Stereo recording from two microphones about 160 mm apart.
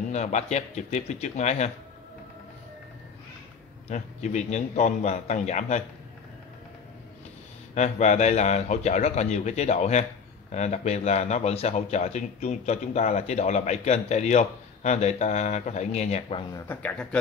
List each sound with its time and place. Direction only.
0.1 s speech: 45° left (ahead or behind)
3.9 s speech: 45° left (ahead or behind)
7.7 s speech: 45° left (ahead or behind)
16.6 s speech: 10° left (ahead or behind)